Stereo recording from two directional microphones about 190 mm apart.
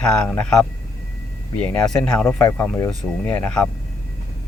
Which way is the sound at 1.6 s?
5° left (ahead or behind).